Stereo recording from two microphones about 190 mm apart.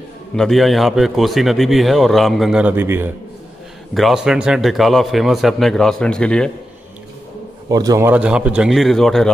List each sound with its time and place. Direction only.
0.4 s a man's voice: centre (ahead or behind)
7.7 s a man's voice: 20° right (ahead or behind)
8.1 s a man's voice: 5° right (ahead or behind)